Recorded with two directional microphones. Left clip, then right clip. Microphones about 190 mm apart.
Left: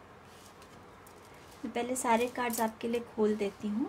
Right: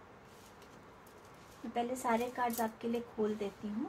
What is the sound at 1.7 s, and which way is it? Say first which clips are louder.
Speech: left 4 dB; 50° left (ahead or behind).